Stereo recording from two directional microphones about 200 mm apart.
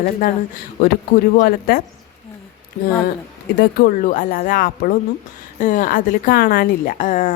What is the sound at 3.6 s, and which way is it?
A woman's voice, 45° left (ahead or behind).